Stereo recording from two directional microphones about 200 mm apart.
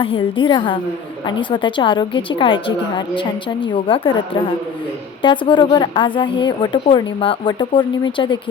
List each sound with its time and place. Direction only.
0.0 s a woman's voice: 25° left (ahead or behind)